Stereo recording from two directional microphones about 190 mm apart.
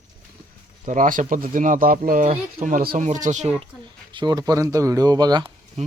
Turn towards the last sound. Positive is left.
turn(degrees=-20)  # may be behind; listen again after turning